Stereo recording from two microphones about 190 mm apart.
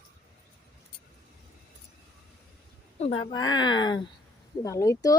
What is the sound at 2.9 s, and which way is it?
Speech, 35° left (ahead or behind).